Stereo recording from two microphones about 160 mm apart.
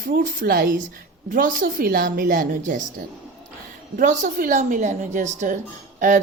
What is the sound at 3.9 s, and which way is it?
A woman's voice, 55° right (ahead or behind).